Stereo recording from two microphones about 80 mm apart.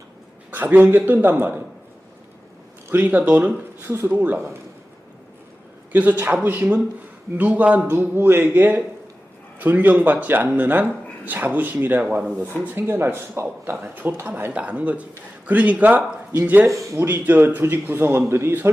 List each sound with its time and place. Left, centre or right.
0.5 s speech: right
2.9 s speech: right
4.1 s speech: centre
5.9 s speech: centre
7.9 s speech: right
16.6 s speech: right
17.0 s speech: right